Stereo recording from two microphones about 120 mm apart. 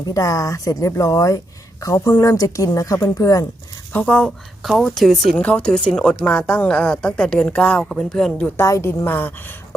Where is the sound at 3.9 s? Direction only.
10° left (ahead or behind).